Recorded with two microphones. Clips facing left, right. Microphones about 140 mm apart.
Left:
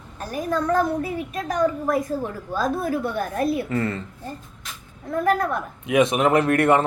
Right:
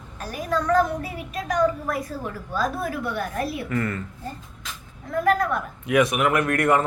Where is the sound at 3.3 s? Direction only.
25° left (ahead or behind).